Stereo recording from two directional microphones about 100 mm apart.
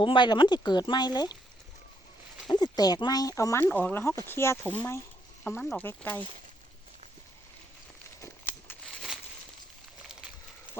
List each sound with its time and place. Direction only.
0.0 s speech: 55° left (ahead or behind)
2.5 s speech: 45° left (ahead or behind)
3.6 s speech: 15° left (ahead or behind)
8.2 s a sound: 20° left (ahead or behind)